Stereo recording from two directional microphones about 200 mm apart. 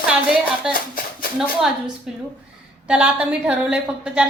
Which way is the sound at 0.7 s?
45° left (ahead or behind).